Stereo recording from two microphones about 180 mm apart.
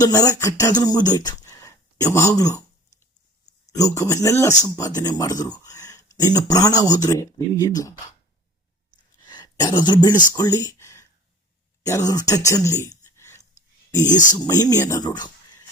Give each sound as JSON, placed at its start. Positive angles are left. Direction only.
{"t": 0.0, "sound": "speech", "side_deg": 20}
{"t": 3.7, "sound": "speech", "side_deg": 20}
{"t": 9.2, "sound": "a sound", "side_deg": 25}
{"t": 11.9, "sound": "speech", "side_deg": 20}
{"t": 12.5, "sound": "a sound", "side_deg": 20}
{"t": 14.3, "sound": "speech", "side_deg": 20}